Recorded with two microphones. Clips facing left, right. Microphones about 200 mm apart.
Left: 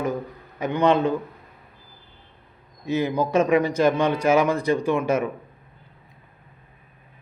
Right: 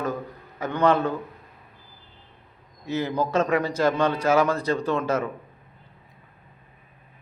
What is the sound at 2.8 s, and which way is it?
A man's voice, 15° left (ahead or behind).